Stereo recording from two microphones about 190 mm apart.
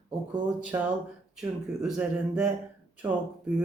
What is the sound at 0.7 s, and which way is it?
Speech, 15° right (ahead or behind).